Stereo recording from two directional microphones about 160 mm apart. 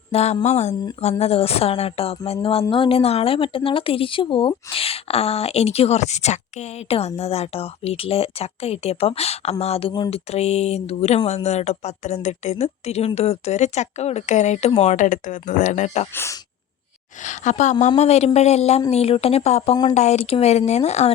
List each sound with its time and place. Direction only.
0.1 s speech: 40° left (ahead or behind)
16.1 s speech: 15° left (ahead or behind)
17.2 s speech: 50° left (ahead or behind)